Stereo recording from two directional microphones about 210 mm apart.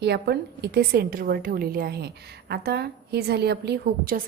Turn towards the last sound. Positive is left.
turn(degrees=-45)  # may be behind; listen again after turning